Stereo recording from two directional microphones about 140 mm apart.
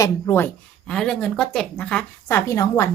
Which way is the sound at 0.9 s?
5° left (ahead or behind).